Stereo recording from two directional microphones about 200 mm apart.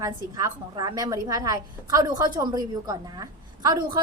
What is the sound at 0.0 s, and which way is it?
A woman's voice, 20° right (ahead or behind).